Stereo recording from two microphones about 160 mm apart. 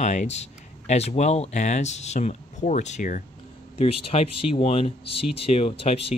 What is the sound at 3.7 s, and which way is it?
Speech, 40° left (ahead or behind).